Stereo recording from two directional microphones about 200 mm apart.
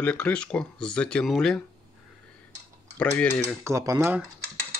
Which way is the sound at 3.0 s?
5° left (ahead or behind).